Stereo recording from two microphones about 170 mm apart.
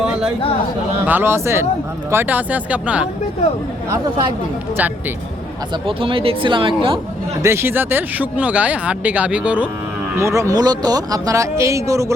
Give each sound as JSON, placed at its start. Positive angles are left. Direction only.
{"t": 1.0, "sound": "speech", "side_deg": -10}
{"t": 5.8, "sound": "speech", "side_deg": -30}
{"t": 7.4, "sound": "speech", "side_deg": -15}